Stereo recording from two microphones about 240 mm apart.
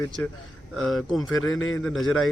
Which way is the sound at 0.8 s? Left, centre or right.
Centre.